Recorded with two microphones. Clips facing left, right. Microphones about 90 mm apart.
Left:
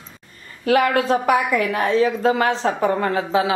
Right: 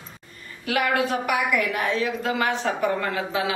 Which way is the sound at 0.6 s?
35° left (ahead or behind).